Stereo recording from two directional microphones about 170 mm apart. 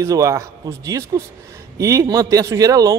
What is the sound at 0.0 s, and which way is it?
A man's voice, 15° right (ahead or behind).